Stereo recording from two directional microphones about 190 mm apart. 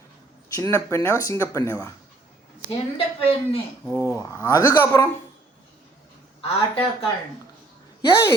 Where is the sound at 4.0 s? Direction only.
15° left (ahead or behind).